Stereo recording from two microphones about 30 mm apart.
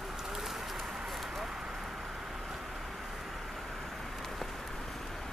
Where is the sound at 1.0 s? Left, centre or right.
Centre.